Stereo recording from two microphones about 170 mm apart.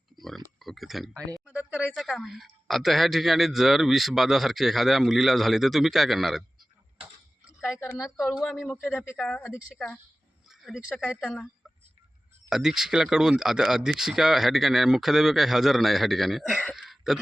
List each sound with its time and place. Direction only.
0.2 s a sound: centre (ahead or behind)
1.5 s a sound: 10° left (ahead or behind)
1.9 s speech: centre (ahead or behind)
7.8 s a woman's voice: 15° left (ahead or behind)
8.2 s speech: centre (ahead or behind)
9.1 s a woman's voice: 5° left (ahead or behind)
12.5 s speech: 5° right (ahead or behind)